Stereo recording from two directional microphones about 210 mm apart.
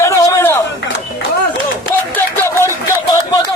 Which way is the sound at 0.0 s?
15° left (ahead or behind).